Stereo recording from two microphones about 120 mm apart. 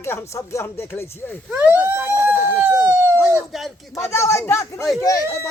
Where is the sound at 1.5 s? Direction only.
15° right (ahead or behind).